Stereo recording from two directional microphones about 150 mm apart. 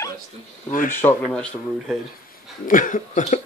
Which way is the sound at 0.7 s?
60° left (ahead or behind).